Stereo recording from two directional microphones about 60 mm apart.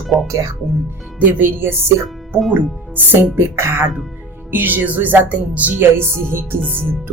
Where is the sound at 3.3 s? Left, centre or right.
Right.